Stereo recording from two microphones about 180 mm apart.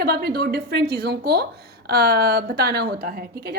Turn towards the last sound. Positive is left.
turn(degrees=-55)  # may be behind; listen again after turning